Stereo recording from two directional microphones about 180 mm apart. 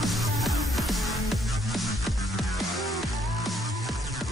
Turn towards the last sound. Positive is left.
turn(degrees=0)  # may be behind; listen again after turning